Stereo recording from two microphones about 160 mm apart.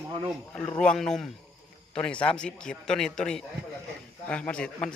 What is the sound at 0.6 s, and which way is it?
A man's voice, 10° left (ahead or behind).